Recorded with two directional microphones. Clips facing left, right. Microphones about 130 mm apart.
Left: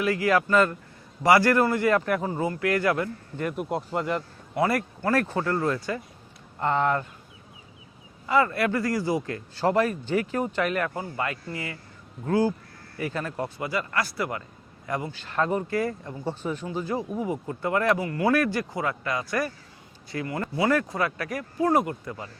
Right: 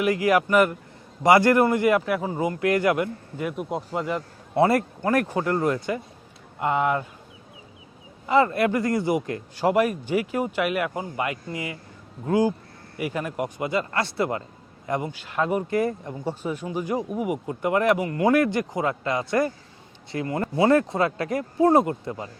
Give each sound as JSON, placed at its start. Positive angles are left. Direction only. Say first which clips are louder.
{"t": 0.0, "sound": "speech", "louder": "right 2 dB", "side_deg": -20}
{"t": 3.3, "sound": "speech", "louder": "even", "side_deg": 0}
{"t": 4.5, "sound": "speech", "louder": "right 5 dB", "side_deg": -25}
{"t": 8.3, "sound": "speech", "louder": "right 3 dB", "side_deg": -25}
{"t": 15.2, "sound": "speech", "louder": "left 1 dB", "side_deg": -10}
{"t": 15.7, "sound": "speech", "louder": "right 3 dB", "side_deg": -20}